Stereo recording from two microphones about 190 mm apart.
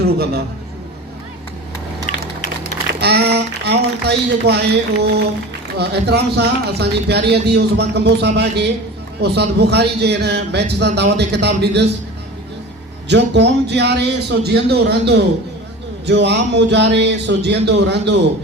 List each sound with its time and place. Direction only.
0.0 s a man's voice: 55° right (ahead or behind)
2.1 s a sound: 45° left (ahead or behind)
3.0 s speech: 60° right (ahead or behind)
13.1 s speech: 65° right (ahead or behind)